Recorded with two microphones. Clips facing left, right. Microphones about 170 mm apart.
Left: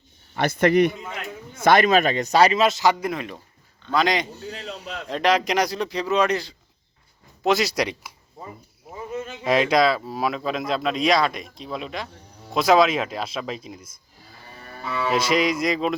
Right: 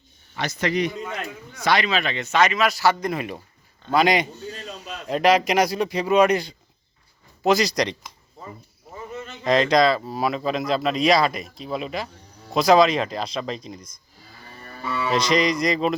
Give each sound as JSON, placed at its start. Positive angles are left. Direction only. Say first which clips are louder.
{"t": 0.3, "sound": "a man's voice", "louder": "left 6 dB", "side_deg": 55}
{"t": 3.0, "sound": "speech", "louder": "right 1 dB", "side_deg": -5}
{"t": 7.4, "sound": "speech", "louder": "right 1 dB", "side_deg": 0}
{"t": 15.1, "sound": "speech", "louder": "right 1 dB", "side_deg": 5}